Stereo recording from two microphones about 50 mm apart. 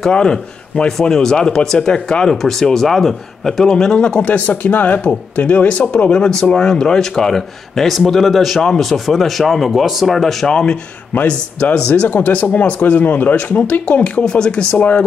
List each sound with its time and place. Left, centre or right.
0.0 s speech: centre
6.1 s speech: centre
11.1 s speech: left
14.8 s speech: left